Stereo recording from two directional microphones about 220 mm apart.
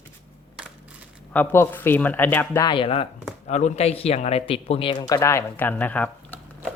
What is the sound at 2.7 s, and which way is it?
Speech, 25° left (ahead or behind).